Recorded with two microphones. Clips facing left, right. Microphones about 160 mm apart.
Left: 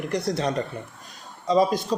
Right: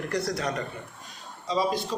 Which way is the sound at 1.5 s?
45° left (ahead or behind).